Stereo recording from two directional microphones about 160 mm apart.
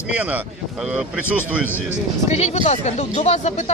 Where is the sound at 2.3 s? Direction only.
45° left (ahead or behind).